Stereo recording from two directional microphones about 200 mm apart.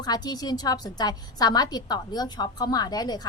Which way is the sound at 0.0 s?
20° left (ahead or behind).